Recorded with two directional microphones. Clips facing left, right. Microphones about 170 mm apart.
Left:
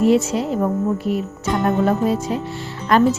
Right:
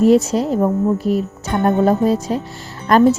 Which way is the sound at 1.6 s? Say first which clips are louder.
Right 4 dB; 40° right (ahead or behind).